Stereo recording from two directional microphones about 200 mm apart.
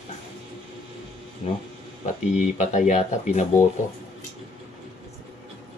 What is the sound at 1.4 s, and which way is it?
Speech, 30° left (ahead or behind).